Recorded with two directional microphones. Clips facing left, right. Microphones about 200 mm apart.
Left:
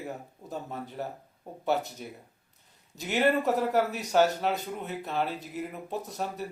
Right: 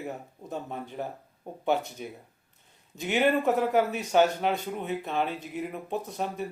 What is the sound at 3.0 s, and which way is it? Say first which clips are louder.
Speech: right 1 dB; centre (ahead or behind).